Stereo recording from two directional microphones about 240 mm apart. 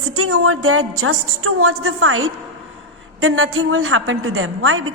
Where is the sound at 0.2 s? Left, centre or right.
Right.